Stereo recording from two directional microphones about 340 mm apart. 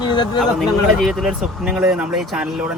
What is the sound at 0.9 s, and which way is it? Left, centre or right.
Speech, centre.